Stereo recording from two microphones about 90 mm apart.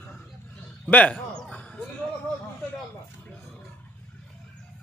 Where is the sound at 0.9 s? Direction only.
15° left (ahead or behind).